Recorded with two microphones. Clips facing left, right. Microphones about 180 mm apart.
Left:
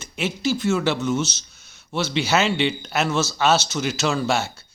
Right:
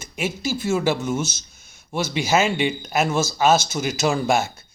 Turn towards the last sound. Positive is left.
turn(degrees=-15)  # may be behind; listen again after turning